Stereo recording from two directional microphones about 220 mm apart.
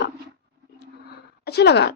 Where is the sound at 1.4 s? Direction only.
50° left (ahead or behind).